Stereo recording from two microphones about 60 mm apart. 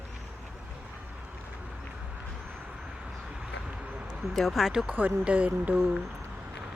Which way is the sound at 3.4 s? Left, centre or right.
Centre.